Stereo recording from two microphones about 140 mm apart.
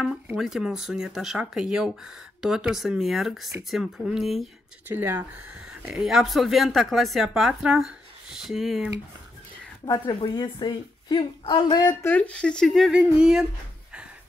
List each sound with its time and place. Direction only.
0.4 s speech: 5° right (ahead or behind)
4.8 s speech: 15° right (ahead or behind)
10.0 s a woman's voice: 35° left (ahead or behind)
12.0 s speech: 10° left (ahead or behind); by 13.5 s 5° right (ahead or behind)